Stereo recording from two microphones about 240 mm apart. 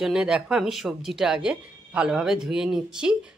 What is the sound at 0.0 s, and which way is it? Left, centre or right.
A woman's voice, centre.